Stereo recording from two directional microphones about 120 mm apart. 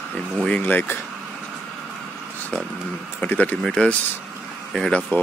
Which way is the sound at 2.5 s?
10° left (ahead or behind).